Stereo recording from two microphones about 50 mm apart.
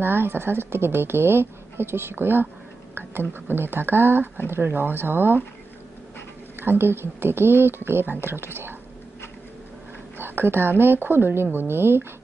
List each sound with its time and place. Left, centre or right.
0.0 s a woman's voice: right
6.6 s a woman's voice: right
10.1 s a woman's voice: right